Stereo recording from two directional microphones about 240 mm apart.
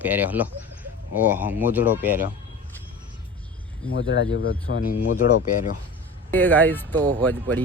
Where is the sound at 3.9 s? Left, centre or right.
Left.